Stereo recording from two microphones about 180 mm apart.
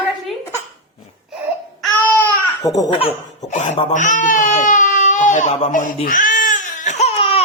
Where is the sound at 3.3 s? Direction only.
40° left (ahead or behind).